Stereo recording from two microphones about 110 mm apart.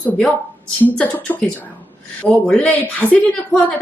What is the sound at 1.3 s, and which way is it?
A woman's voice, 15° left (ahead or behind).